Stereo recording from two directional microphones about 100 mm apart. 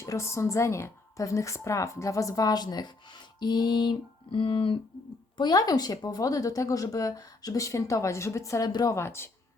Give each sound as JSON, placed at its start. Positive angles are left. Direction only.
{"t": 0.0, "sound": "a woman's voice", "side_deg": 30}
{"t": 3.4, "sound": "a sound", "side_deg": 45}
{"t": 5.4, "sound": "a woman's voice", "side_deg": 40}
{"t": 9.0, "sound": "speech", "side_deg": 25}